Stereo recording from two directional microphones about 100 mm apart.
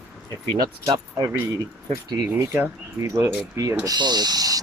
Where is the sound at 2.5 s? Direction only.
30° right (ahead or behind).